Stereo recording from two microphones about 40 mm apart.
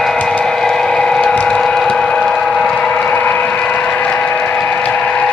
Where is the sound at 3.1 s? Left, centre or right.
Left.